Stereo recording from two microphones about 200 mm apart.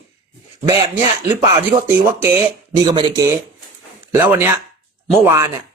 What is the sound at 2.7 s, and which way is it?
Speech, 20° right (ahead or behind).